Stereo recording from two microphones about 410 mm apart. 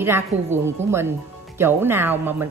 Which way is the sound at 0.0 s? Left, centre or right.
Centre.